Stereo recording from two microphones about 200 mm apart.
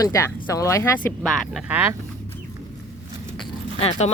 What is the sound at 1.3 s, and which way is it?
Speech, 5° right (ahead or behind).